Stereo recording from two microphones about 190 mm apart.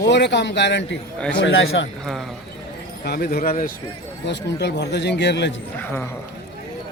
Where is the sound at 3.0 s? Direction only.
55° left (ahead or behind).